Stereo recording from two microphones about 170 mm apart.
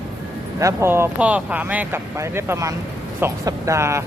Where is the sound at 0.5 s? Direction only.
15° right (ahead or behind).